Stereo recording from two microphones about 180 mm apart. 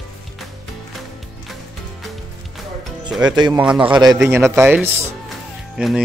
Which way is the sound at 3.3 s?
25° right (ahead or behind).